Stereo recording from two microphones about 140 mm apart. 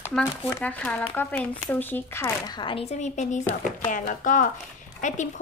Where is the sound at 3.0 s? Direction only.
60° left (ahead or behind).